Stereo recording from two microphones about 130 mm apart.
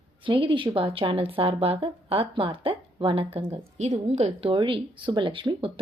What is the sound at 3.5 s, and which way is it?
Speech, 55° right (ahead or behind).